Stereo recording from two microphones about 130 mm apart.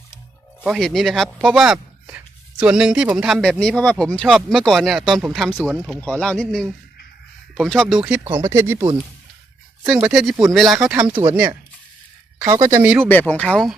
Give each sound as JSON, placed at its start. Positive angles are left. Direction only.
{"t": 0.6, "sound": "speech", "side_deg": 0}
{"t": 6.0, "sound": "speech", "side_deg": 5}
{"t": 8.0, "sound": "speech", "side_deg": -15}
{"t": 8.3, "sound": "speech", "side_deg": -25}
{"t": 9.8, "sound": "speech", "side_deg": -5}
{"t": 11.1, "sound": "speech", "side_deg": -35}
{"t": 12.5, "sound": "speech", "side_deg": -20}
{"t": 13.1, "sound": "speech", "side_deg": 15}